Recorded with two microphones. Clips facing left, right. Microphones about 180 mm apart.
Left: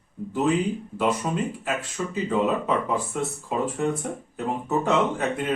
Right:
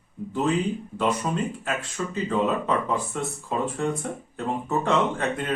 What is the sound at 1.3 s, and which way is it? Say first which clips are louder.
Speech: left 1 dB; 5° left (ahead or behind).